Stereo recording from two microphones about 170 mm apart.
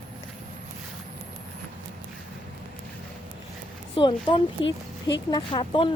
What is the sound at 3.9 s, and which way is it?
A woman's voice, 30° left (ahead or behind).